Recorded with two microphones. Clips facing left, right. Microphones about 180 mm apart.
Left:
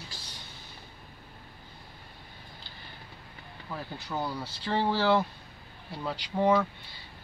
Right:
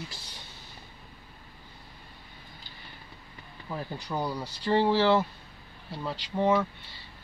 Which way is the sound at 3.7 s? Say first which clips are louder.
Right 2 dB; 15° right (ahead or behind).